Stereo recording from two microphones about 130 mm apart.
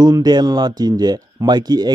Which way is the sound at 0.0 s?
30° right (ahead or behind).